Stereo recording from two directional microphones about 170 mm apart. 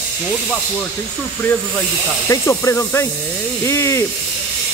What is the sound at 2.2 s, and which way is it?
Speech, 15° left (ahead or behind).